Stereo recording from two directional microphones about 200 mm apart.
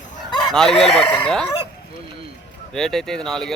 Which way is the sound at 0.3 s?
20° left (ahead or behind).